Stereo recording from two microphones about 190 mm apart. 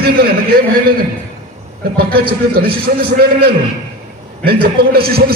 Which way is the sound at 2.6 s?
55° right (ahead or behind).